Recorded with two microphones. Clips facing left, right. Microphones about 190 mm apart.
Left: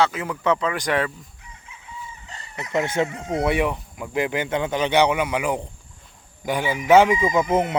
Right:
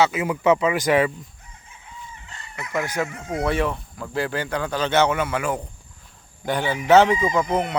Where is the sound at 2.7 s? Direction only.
25° left (ahead or behind).